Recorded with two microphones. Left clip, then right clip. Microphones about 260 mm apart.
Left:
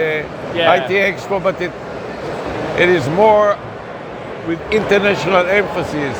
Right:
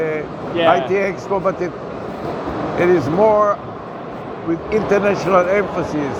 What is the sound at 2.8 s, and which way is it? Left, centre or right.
Speech, left.